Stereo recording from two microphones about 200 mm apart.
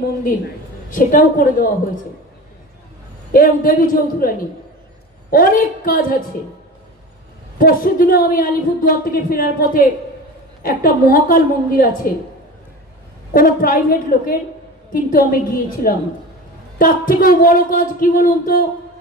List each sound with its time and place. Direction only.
0.8 s a woman's voice: 45° left (ahead or behind)
3.3 s a woman's voice: 45° left (ahead or behind)
7.5 s a woman's voice: 45° left (ahead or behind)
13.3 s a woman's voice: 45° left (ahead or behind)